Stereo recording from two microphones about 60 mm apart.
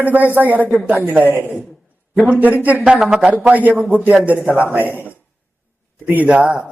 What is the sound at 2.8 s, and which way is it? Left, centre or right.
Speech, centre.